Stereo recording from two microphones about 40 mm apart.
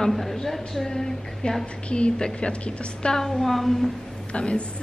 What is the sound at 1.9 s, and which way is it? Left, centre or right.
A woman's voice, left.